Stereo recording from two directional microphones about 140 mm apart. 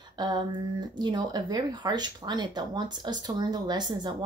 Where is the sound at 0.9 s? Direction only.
30° right (ahead or behind).